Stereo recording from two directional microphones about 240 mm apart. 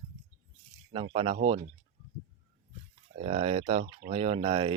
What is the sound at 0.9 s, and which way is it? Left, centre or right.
Speech, right.